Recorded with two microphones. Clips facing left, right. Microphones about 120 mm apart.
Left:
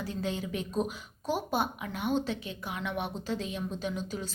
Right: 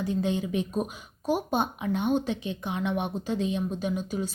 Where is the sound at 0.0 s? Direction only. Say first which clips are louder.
Right 6 dB; 20° right (ahead or behind).